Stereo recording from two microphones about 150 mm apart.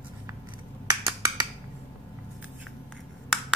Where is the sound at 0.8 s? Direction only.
25° right (ahead or behind).